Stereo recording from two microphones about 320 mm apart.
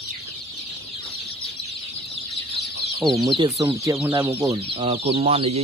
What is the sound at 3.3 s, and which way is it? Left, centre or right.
Speech, centre.